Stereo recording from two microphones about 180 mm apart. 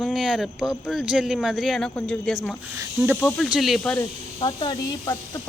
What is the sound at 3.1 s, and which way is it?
Speech, 5° left (ahead or behind).